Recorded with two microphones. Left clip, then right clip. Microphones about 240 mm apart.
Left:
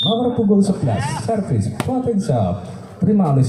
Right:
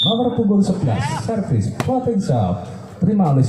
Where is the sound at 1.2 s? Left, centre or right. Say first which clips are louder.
Left 2 dB; left.